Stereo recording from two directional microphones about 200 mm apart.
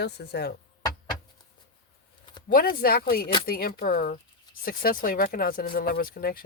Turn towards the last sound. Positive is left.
turn(degrees=50)  # may be behind; listen again after turning